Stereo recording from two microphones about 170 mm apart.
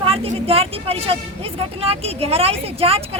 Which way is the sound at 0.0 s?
35° right (ahead or behind).